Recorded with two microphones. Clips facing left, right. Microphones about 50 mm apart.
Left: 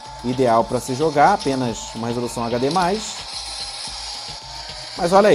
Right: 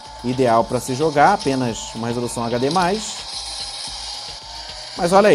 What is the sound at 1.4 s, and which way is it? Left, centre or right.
Speech, right.